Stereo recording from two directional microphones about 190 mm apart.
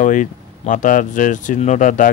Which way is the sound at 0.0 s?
45° left (ahead or behind).